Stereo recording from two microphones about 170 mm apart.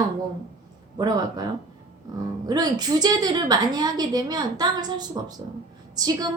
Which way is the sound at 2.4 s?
25° right (ahead or behind).